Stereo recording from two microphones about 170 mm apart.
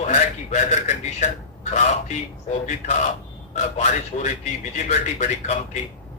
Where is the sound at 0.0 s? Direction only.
40° left (ahead or behind).